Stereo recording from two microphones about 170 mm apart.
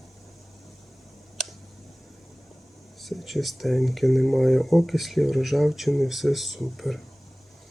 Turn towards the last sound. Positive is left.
turn(degrees=0)  # may be behind; listen again after turning